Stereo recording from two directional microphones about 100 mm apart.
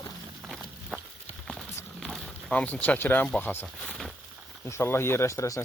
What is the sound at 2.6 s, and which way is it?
Speech, 15° left (ahead or behind).